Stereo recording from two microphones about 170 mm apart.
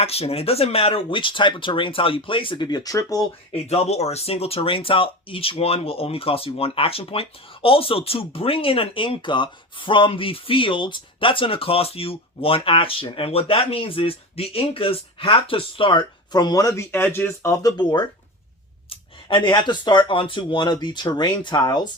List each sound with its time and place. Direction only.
0.0 s speech: 35° left (ahead or behind); by 3.2 s 20° left (ahead or behind)
3.5 s speech: 40° left (ahead or behind)